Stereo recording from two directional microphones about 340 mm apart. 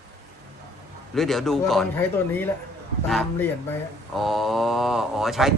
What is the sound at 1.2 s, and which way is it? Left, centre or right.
Speech, centre.